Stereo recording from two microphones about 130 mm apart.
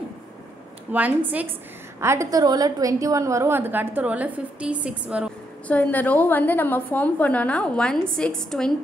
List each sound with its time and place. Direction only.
0.9 s a woman's voice: 10° right (ahead or behind)
5.7 s a woman's voice: 10° left (ahead or behind)